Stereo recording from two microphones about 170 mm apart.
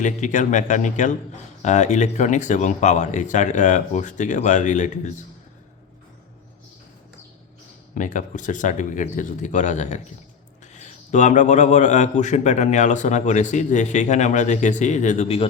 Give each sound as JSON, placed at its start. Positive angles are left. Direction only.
{"t": 0.0, "sound": "a man's voice", "side_deg": 45}
{"t": 7.9, "sound": "a man's voice", "side_deg": 50}